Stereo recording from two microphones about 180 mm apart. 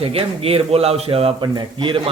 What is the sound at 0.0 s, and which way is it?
A man's voice, 30° right (ahead or behind).